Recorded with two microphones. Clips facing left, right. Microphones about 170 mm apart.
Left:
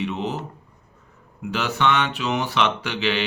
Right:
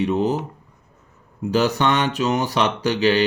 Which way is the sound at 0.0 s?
40° right (ahead or behind).